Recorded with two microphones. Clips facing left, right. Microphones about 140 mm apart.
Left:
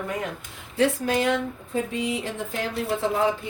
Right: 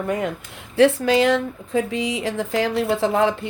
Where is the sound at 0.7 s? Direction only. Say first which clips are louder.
Right 7 dB; 80° right.